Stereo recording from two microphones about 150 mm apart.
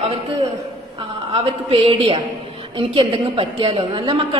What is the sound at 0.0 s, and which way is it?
A woman's voice, 40° right (ahead or behind).